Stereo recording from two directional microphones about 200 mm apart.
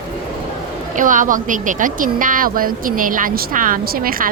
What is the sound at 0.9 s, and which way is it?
Speech, 40° right (ahead or behind).